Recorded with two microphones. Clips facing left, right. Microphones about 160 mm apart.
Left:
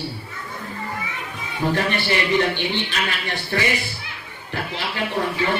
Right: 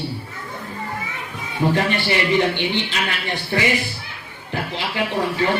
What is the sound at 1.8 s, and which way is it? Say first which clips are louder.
A man's voice: right 2 dB; 15° right (ahead or behind).